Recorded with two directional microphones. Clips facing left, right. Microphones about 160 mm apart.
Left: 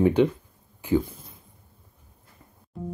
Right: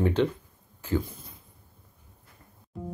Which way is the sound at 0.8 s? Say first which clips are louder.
Left 5 dB; 15° left (ahead or behind).